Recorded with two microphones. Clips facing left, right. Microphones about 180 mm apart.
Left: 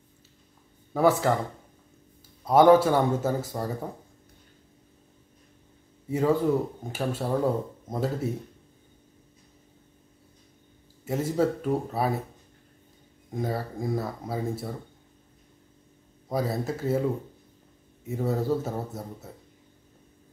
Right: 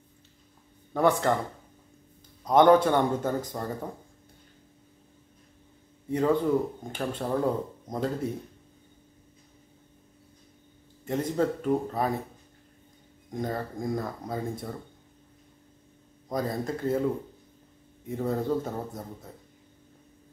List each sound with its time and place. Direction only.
0.9 s speech: 5° left (ahead or behind)
2.4 s speech: 5° left (ahead or behind)
6.0 s speech: 5° left (ahead or behind)
11.1 s speech: 5° left (ahead or behind)
13.3 s speech: 5° left (ahead or behind)
16.3 s speech: 5° left (ahead or behind)
18.0 s speech: 5° left (ahead or behind)